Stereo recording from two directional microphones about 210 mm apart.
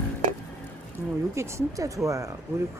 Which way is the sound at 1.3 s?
15° right (ahead or behind).